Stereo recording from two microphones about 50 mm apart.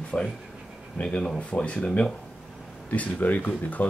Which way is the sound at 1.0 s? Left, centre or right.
Centre.